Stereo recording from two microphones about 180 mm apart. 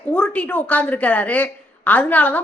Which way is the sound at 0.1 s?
5° left (ahead or behind).